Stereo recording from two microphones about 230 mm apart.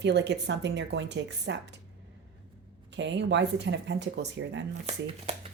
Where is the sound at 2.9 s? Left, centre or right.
Right.